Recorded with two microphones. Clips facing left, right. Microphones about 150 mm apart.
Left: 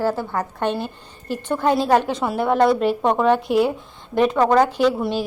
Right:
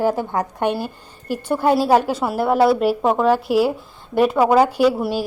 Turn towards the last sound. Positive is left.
turn(degrees=-10)  # may be behind; listen again after turning